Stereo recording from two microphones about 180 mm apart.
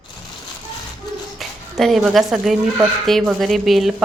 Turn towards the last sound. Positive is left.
turn(degrees=0)  # may be behind; listen again after turning